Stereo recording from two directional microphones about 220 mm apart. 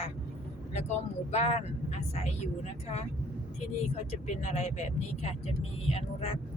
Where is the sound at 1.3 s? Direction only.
30° left (ahead or behind).